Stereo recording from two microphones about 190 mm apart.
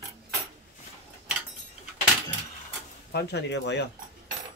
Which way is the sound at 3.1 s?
60° left (ahead or behind).